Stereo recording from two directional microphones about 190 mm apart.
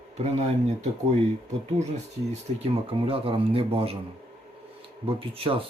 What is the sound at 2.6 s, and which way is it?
Speech, 30° right (ahead or behind).